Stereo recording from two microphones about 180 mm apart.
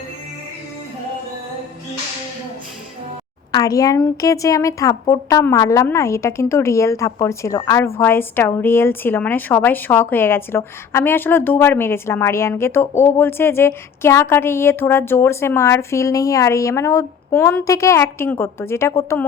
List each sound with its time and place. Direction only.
3.5 s a woman's voice: 20° left (ahead or behind)